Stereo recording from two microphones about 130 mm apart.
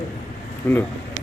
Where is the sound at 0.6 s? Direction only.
15° left (ahead or behind).